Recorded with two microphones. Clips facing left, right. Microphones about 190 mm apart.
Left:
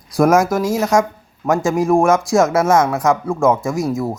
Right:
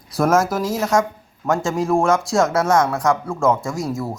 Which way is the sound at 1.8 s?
15° left (ahead or behind).